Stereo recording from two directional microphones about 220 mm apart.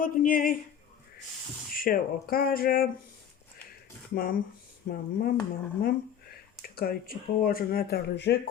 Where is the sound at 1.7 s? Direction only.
40° left (ahead or behind).